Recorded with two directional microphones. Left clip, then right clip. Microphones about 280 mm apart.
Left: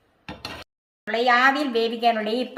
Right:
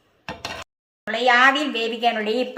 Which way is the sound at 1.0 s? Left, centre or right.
Centre.